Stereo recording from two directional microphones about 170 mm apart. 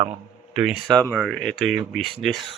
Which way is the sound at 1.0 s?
10° left (ahead or behind).